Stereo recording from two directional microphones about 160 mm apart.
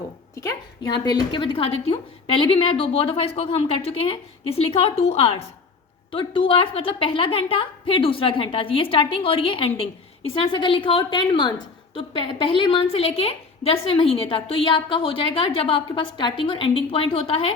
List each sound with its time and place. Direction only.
0.3 s a woman's voice: 25° left (ahead or behind)